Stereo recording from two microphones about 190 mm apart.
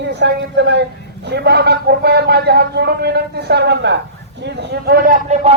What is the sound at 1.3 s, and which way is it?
A man's voice, 60° right (ahead or behind).